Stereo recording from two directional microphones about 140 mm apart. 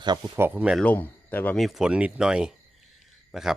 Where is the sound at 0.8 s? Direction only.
10° left (ahead or behind).